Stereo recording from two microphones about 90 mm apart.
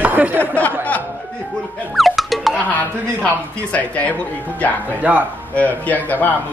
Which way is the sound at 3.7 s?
15° left (ahead or behind).